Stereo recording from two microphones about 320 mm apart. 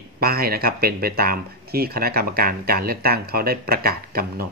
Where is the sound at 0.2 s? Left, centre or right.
Right.